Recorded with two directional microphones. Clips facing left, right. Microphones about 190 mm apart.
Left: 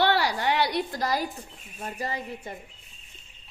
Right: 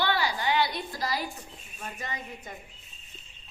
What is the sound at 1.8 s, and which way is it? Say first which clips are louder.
Speech: left 6 dB; 35° left (ahead or behind).